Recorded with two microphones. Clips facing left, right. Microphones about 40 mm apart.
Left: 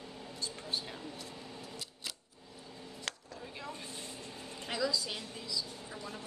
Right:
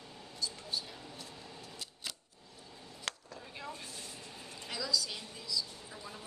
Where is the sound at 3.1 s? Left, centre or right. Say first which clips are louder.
Right 1 dB; centre.